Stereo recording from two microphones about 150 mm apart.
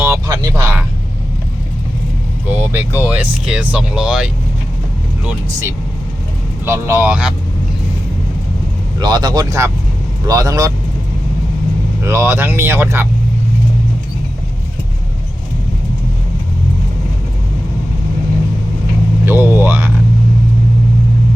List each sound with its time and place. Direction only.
0.0 s a sound: 15° right (ahead or behind)
2.5 s vehicle: 15° right (ahead or behind)
3.0 s speech: 10° right (ahead or behind)
6.7 s speech: 15° right (ahead or behind)
9.0 s speech: 25° right (ahead or behind)
12.0 s speech: 15° right (ahead or behind)
19.2 s vehicle: 15° right (ahead or behind)